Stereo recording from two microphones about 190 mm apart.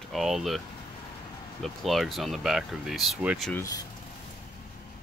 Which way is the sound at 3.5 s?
15° left (ahead or behind).